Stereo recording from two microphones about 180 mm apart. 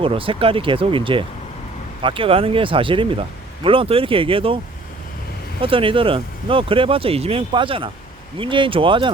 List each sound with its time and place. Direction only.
0.0 s speech: 30° right (ahead or behind)
5.6 s speech: 30° right (ahead or behind)